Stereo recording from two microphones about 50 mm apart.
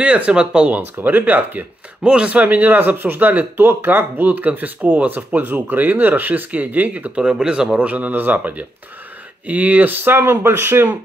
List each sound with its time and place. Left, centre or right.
0.0 s speech: right
1.0 s a man's voice: right
2.0 s a man's voice: right
7.2 s speech: centre
7.9 s a man's voice: right